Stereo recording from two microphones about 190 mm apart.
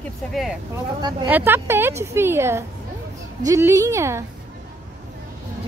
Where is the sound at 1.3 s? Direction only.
10° right (ahead or behind).